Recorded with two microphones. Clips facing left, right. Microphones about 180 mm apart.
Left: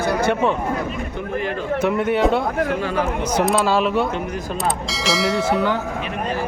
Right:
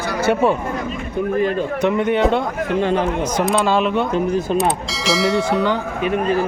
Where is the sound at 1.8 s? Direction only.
5° left (ahead or behind).